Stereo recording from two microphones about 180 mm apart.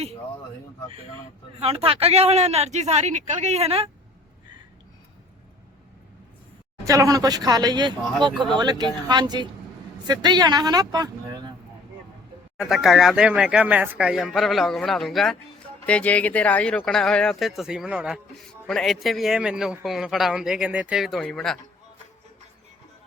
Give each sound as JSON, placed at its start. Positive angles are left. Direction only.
{"t": 1.5, "sound": "a man's voice", "side_deg": -35}
{"t": 6.8, "sound": "speech", "side_deg": -20}
{"t": 12.5, "sound": "speech", "side_deg": 0}